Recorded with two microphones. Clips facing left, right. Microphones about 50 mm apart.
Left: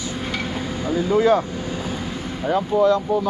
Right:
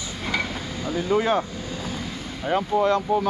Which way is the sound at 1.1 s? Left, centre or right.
Right.